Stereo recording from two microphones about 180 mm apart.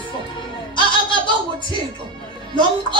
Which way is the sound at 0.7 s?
25° left (ahead or behind).